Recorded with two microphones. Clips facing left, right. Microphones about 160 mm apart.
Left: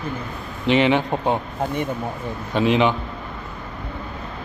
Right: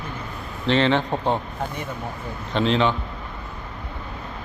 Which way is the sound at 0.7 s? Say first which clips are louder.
Left 2 dB; 15° left (ahead or behind).